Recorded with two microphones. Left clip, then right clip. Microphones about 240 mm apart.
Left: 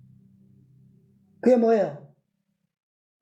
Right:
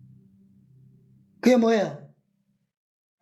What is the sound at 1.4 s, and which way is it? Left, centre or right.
Speech, right.